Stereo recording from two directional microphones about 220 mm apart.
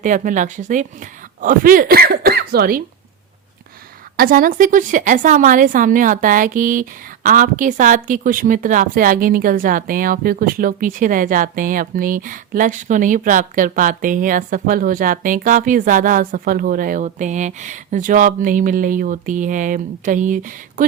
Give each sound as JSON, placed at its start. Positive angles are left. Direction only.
{"t": 0.0, "sound": "a woman's voice", "side_deg": -35}
{"t": 4.2, "sound": "a woman's voice", "side_deg": -40}